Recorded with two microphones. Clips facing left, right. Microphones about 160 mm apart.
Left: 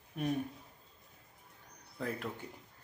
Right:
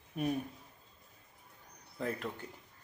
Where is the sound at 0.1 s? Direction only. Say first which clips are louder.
Right 2 dB; 5° right (ahead or behind).